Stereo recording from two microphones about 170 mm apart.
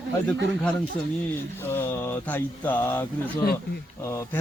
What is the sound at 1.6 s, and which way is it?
Speech, 15° left (ahead or behind).